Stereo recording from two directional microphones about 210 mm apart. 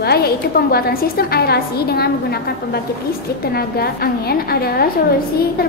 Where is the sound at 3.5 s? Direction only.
50° left (ahead or behind).